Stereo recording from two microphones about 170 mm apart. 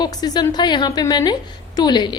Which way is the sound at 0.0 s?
25° left (ahead or behind).